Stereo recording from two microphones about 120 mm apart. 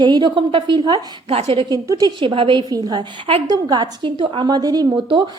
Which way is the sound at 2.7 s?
30° right (ahead or behind).